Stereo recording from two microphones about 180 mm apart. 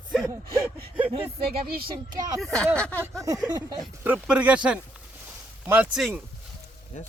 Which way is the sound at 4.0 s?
10° right (ahead or behind).